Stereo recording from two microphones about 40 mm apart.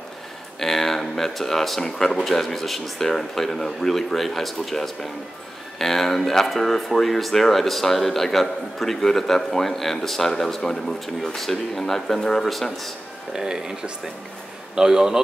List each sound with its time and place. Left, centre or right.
0.6 s speech: centre
2.2 s speech: centre
13.3 s speech: centre